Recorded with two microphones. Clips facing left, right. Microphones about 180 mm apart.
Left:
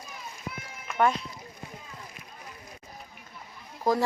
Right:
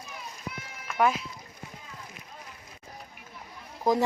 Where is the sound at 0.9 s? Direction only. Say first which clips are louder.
Even; 5° right (ahead or behind).